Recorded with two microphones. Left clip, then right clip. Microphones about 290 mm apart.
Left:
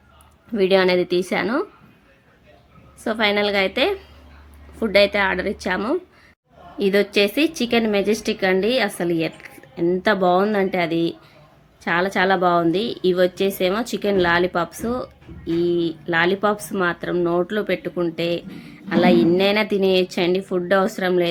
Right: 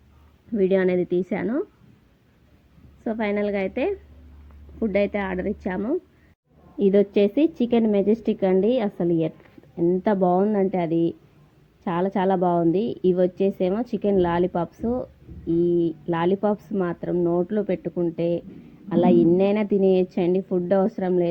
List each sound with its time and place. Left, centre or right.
0.5 s a woman's voice: centre
3.0 s a woman's voice: centre
14.8 s a woman's voice: centre
15.4 s speech: centre